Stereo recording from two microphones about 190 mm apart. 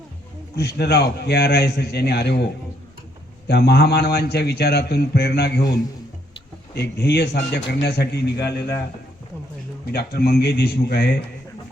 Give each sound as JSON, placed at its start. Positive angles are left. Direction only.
{"t": 0.5, "sound": "a man's voice", "side_deg": 60}
{"t": 9.9, "sound": "a man's voice", "side_deg": 55}